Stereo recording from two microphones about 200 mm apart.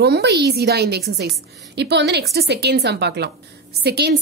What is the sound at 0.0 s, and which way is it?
A woman's voice, 55° right (ahead or behind).